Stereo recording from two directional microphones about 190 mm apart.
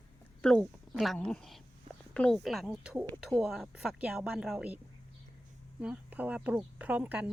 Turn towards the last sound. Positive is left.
turn(degrees=-5)  # may be behind; listen again after turning